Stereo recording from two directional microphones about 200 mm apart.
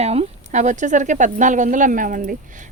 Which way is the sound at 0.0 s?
30° right (ahead or behind).